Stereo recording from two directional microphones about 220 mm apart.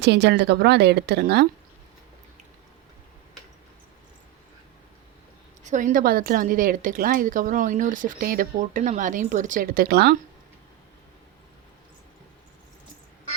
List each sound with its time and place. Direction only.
0.0 s a woman's voice: 50° right (ahead or behind)
5.6 s speech: 35° right (ahead or behind)